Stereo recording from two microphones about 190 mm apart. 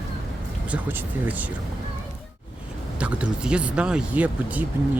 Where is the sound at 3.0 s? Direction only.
5° right (ahead or behind).